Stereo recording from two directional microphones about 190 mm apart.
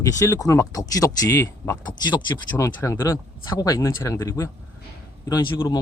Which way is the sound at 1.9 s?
20° left (ahead or behind).